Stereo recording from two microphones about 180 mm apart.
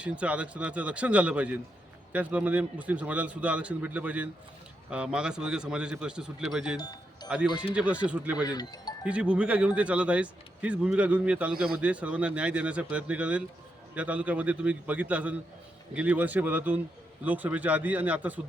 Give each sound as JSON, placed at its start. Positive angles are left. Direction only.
{"t": 0.0, "sound": "speech", "side_deg": -5}
{"t": 8.4, "sound": "speech", "side_deg": 20}
{"t": 9.0, "sound": "speech", "side_deg": -5}